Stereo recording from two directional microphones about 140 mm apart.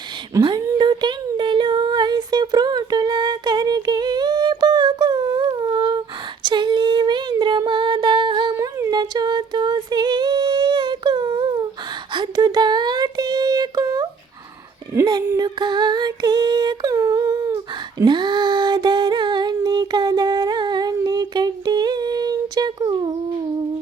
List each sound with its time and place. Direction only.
0.8 s a sound: 35° right (ahead or behind)
6.4 s female singing: 30° right (ahead or behind)
8.5 s female singing: 20° right (ahead or behind)
12.1 s child singing: 30° right (ahead or behind)
15.4 s humming: 30° right (ahead or behind)